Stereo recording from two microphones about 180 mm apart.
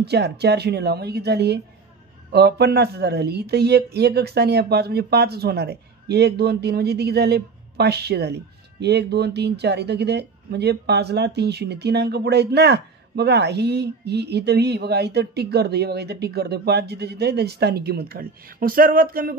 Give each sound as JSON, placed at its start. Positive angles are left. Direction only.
{"t": 0.0, "sound": "speech", "side_deg": -65}